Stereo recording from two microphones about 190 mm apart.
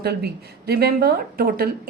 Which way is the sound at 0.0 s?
55° right (ahead or behind).